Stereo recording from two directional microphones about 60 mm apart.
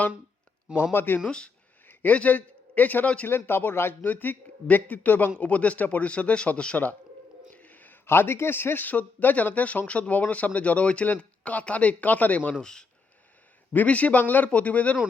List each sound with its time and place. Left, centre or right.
0.9 s a man's voice: left
7.5 s a sound: left
8.0 s speech: left
12.5 s speech: centre
13.7 s speech: left